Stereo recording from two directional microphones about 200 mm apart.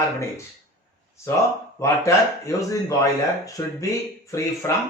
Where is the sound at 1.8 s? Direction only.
15° left (ahead or behind).